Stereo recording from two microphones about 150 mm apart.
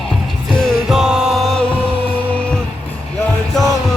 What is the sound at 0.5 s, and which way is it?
Music, 5° right (ahead or behind).